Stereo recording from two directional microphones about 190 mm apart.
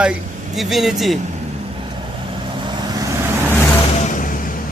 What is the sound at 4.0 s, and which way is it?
Music, 45° left (ahead or behind).